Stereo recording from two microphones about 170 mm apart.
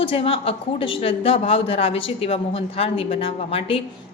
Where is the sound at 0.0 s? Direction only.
35° left (ahead or behind).